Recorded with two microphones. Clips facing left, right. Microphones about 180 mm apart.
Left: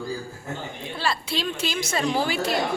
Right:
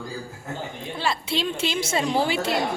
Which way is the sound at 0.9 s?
20° right (ahead or behind).